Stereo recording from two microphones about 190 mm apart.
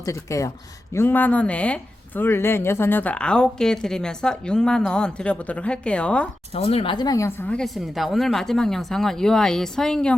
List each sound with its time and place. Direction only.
0.0 s speech: 15° left (ahead or behind)
6.5 s speech: 30° left (ahead or behind); by 10.2 s 5° left (ahead or behind)